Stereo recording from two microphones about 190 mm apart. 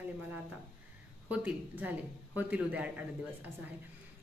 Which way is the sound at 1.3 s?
5° right (ahead or behind).